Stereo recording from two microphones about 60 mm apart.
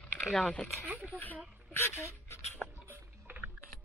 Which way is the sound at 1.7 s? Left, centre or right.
Left.